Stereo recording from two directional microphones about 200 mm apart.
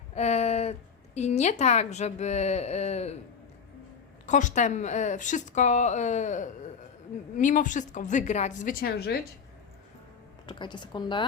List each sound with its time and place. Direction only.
0.1 s a woman's voice: 35° left (ahead or behind)
4.3 s a woman's voice: 40° left (ahead or behind)
10.4 s speech: 20° left (ahead or behind)